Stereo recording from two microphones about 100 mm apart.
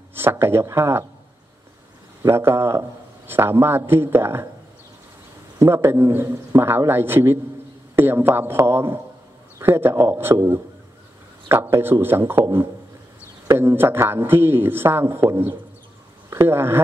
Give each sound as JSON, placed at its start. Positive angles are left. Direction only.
{"t": 0.1, "sound": "speech", "side_deg": -20}
{"t": 2.2, "sound": "a man's voice", "side_deg": -25}
{"t": 5.6, "sound": "a man's voice", "side_deg": -25}
{"t": 13.5, "sound": "a man's voice", "side_deg": -25}